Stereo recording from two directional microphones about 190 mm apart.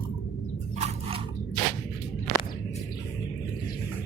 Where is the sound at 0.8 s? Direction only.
30° right (ahead or behind).